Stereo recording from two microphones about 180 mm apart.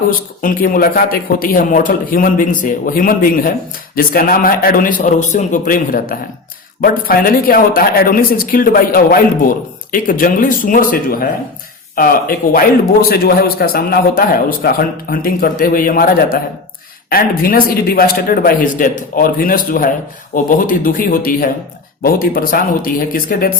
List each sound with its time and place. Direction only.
0.4 s speech: 50° left (ahead or behind)